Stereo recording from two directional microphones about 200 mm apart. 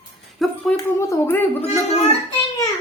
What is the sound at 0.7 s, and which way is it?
Speech, 10° left (ahead or behind).